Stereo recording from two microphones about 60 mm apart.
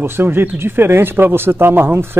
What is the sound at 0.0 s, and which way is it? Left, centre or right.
Speech, right.